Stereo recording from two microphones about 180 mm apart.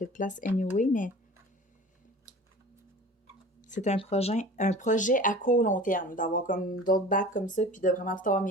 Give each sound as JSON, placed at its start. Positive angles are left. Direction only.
{"t": 0.0, "sound": "speech", "side_deg": 45}
{"t": 3.6, "sound": "speech", "side_deg": 45}